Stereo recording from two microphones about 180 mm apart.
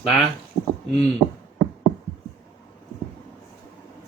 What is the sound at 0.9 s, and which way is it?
Speech, centre (ahead or behind).